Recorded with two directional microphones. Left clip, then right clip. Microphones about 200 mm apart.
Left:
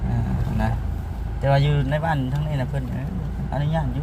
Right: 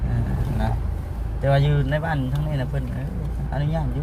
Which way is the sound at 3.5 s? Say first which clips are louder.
Left 2 dB; 30° left (ahead or behind).